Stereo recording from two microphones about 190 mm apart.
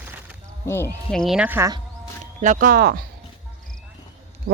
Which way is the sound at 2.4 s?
45° right (ahead or behind).